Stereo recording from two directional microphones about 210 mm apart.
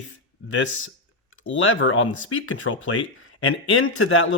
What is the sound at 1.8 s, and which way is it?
Speech, 65° left (ahead or behind).